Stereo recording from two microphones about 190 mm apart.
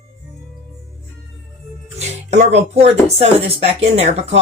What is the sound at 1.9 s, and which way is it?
Speech, 35° right (ahead or behind).